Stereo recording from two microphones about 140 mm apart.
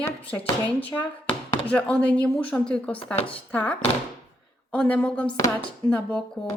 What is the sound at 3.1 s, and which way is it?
Speech, 40° left (ahead or behind).